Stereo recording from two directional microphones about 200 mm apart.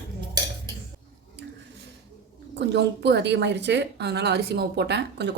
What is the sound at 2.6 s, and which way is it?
A woman's voice, 60° right (ahead or behind).